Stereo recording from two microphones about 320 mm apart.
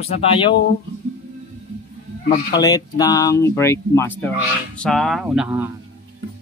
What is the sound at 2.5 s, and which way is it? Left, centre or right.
Speech, centre.